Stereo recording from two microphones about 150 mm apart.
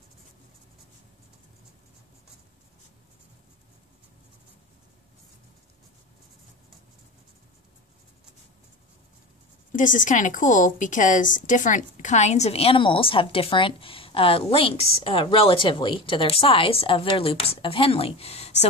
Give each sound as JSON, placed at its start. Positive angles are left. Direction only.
{"t": 9.7, "sound": "a woman's voice", "side_deg": 60}